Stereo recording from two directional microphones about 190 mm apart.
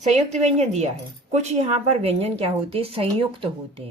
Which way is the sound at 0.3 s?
35° right (ahead or behind).